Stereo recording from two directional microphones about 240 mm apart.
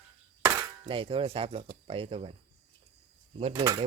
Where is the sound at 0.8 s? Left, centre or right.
Right.